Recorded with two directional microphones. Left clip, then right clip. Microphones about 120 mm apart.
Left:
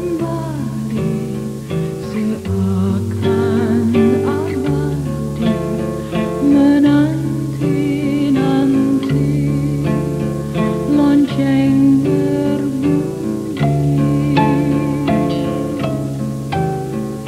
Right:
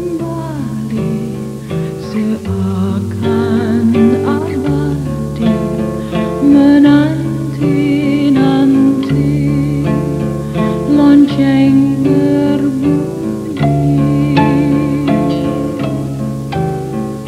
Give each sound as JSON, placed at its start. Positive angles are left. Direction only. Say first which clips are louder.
{"t": 2.8, "sound": "music", "louder": "right 2 dB", "side_deg": -30}
{"t": 6.1, "sound": "music", "louder": "right 4 dB", "side_deg": -30}